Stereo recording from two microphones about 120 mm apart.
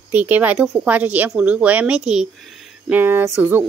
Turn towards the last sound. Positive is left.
turn(degrees=-15)  # may be behind; listen again after turning